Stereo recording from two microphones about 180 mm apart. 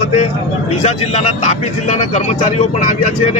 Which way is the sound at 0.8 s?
40° left (ahead or behind).